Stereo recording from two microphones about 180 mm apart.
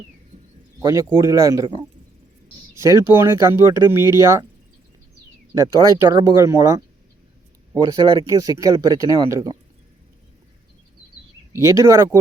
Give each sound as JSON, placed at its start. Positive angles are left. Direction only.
{"t": 0.8, "sound": "speech", "side_deg": -20}
{"t": 2.8, "sound": "speech", "side_deg": -15}
{"t": 5.5, "sound": "speech", "side_deg": -20}
{"t": 11.5, "sound": "speech", "side_deg": -15}